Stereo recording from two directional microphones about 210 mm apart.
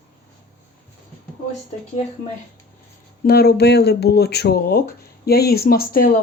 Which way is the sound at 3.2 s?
50° left (ahead or behind).